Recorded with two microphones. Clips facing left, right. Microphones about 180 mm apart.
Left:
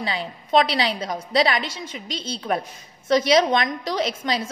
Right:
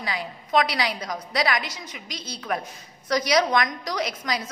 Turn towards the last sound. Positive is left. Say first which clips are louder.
# left 4 dB
turn(degrees=25)  # may be behind; listen again after turning